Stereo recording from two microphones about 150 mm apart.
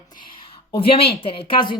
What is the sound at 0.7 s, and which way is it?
A woman's voice, 40° left (ahead or behind).